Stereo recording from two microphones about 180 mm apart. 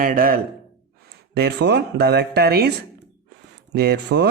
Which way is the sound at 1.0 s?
65° right (ahead or behind).